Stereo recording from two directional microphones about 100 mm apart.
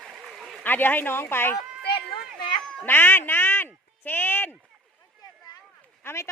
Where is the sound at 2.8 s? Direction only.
20° left (ahead or behind).